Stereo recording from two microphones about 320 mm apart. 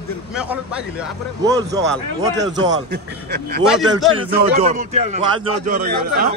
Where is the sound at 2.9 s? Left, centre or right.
Right.